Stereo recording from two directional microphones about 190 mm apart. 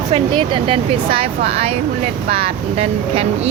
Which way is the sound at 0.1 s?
25° right (ahead or behind).